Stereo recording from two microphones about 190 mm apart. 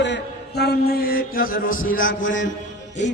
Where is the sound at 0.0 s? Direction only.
65° left (ahead or behind); by 2.0 s 45° left (ahead or behind).